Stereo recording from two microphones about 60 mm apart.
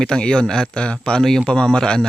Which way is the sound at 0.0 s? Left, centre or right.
Centre.